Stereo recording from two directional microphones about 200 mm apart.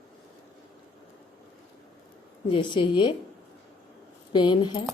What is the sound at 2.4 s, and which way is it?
Speech, 25° left (ahead or behind).